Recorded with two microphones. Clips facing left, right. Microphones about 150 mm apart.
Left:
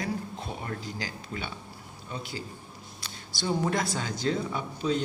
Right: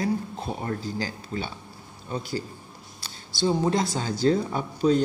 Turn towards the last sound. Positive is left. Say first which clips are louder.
# right 6 dB
turn(degrees=-40)  # may be behind; listen again after turning